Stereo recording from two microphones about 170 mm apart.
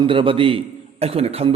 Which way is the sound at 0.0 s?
30° right (ahead or behind).